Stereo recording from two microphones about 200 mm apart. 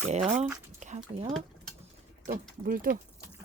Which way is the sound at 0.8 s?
35° right (ahead or behind).